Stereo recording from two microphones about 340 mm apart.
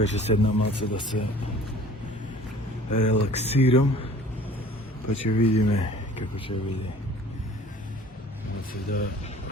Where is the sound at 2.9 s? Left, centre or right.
Left.